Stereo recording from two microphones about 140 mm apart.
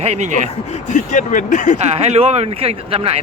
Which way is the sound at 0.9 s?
65° left (ahead or behind).